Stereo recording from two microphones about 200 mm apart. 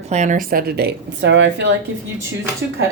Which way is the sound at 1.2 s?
65° right (ahead or behind).